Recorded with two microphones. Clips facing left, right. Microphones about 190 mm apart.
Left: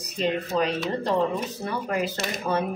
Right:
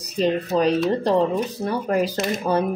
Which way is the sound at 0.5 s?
30° right (ahead or behind).